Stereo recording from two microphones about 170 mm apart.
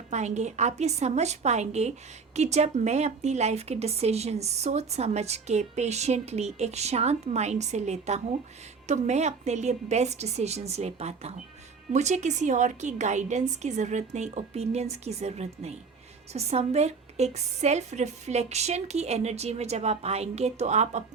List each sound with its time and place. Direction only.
0.1 s a woman's voice: 45° right (ahead or behind)